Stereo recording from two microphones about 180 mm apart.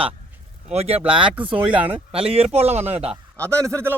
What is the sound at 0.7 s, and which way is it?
Speech, 35° right (ahead or behind).